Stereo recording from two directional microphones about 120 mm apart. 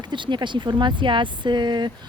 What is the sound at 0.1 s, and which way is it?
Speech, 40° right (ahead or behind).